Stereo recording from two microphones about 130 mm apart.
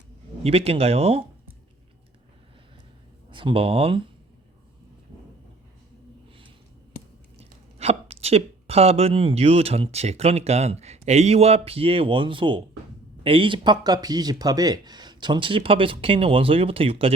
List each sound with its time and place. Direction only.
0.4 s speech: 50° right (ahead or behind)
3.2 s speech: 40° right (ahead or behind)
7.3 s speech: 50° right (ahead or behind)